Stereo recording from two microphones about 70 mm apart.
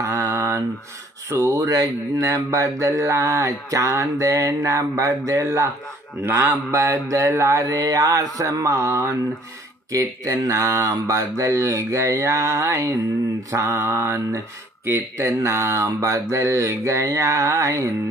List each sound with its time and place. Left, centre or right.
0.0 s mantra: right
1.3 s speech: right
6.2 s speech: right
6.7 s speech: right
10.2 s speech: right
13.5 s mantra: right
14.9 s speech: right